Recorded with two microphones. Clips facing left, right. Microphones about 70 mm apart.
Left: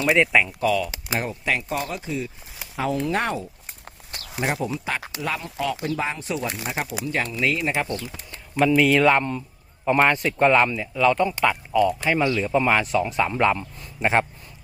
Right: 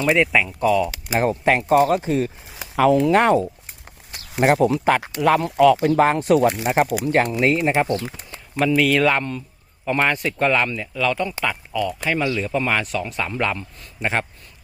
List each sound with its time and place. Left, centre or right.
0.0 s speech: centre
0.6 s speech: centre
1.2 s speech: right
1.6 s speech: right
2.7 s speech: right
4.4 s speech: right
7.4 s speech: right
7.9 s speech: right
8.5 s speech: centre